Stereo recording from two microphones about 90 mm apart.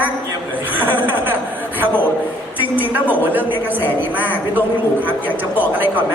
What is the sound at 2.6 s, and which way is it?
A woman's voice, 20° right (ahead or behind).